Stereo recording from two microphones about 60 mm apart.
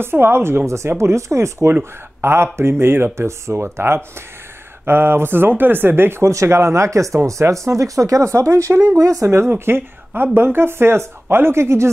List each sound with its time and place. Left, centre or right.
0.0 s speech: right
1.7 s speech: right
9.5 s speech: right